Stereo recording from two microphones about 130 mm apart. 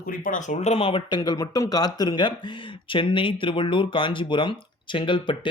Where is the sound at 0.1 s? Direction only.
90° left.